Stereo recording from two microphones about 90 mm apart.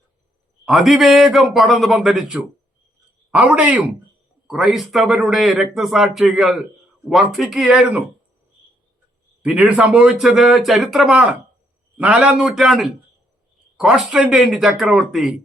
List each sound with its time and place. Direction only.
0.6 s speech: centre (ahead or behind)
3.3 s speech: 15° right (ahead or behind)
4.4 s speech: centre (ahead or behind)
9.4 s a man's voice: 15° right (ahead or behind)
12.2 s speech: 5° right (ahead or behind)